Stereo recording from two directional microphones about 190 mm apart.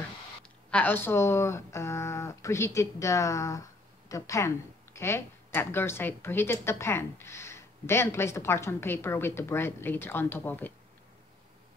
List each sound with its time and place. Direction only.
0.4 s a woman's voice: 5° left (ahead or behind)